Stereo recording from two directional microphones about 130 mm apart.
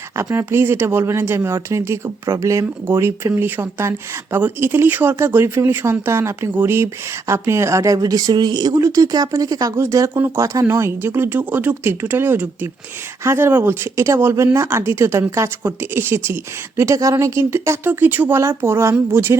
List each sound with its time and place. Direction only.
0.2 s speech: 20° right (ahead or behind)